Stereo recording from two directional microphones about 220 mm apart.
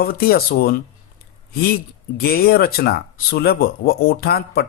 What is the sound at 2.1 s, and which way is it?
Speech, 45° left (ahead or behind).